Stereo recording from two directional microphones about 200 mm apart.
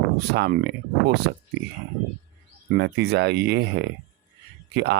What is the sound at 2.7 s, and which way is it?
Speech, 55° right (ahead or behind).